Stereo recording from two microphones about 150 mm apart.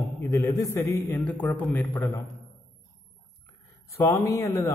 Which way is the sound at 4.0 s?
20° left (ahead or behind).